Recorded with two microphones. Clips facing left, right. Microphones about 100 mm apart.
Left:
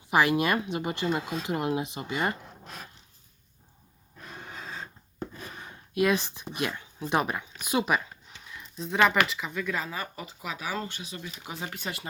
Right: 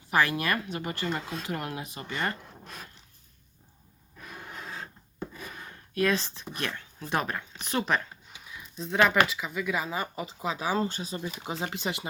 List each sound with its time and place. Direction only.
0.1 s speech: 15° left (ahead or behind)
4.2 s gasp: 5° right (ahead or behind)
5.5 s speech: 15° left (ahead or behind)
8.3 s a sound: centre (ahead or behind)
9.2 s speech: centre (ahead or behind); by 12.0 s 20° right (ahead or behind)